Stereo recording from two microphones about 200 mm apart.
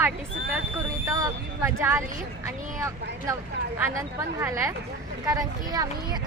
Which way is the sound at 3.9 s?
15° right (ahead or behind).